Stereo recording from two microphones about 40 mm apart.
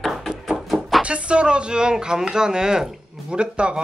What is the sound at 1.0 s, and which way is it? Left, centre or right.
Speech, right.